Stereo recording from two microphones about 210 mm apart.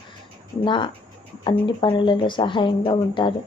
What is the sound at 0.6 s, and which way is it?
Speech, 20° left (ahead or behind).